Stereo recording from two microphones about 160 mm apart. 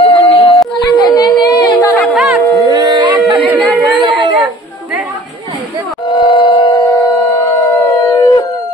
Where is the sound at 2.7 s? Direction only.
25° right (ahead or behind).